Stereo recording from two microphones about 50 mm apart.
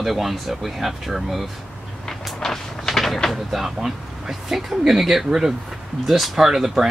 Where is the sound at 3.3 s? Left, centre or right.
Centre.